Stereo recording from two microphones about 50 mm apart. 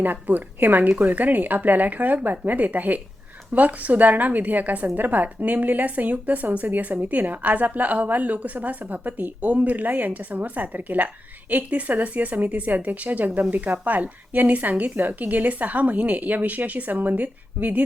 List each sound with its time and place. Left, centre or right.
0.0 s speech: right